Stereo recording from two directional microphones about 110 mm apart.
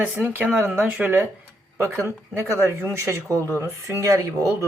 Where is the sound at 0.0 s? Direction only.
15° right (ahead or behind).